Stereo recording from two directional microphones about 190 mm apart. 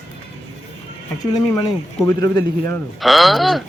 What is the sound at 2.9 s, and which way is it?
Speech, centre (ahead or behind).